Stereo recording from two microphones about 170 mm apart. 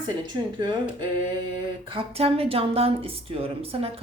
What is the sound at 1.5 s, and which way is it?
Speech, 30° right (ahead or behind).